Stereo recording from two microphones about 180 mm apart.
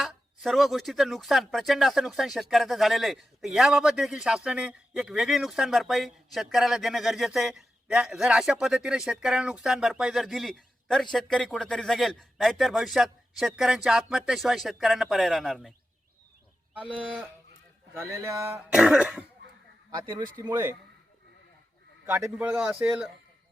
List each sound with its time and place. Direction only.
0.0 s speech: centre (ahead or behind)
16.7 s a man's voice: 5° right (ahead or behind)
18.7 s speech: 5° right (ahead or behind)
19.9 s speech: 25° right (ahead or behind)
22.0 s a man's voice: 10° right (ahead or behind)